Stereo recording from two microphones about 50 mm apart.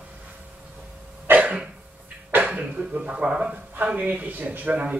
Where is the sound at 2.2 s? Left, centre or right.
Right.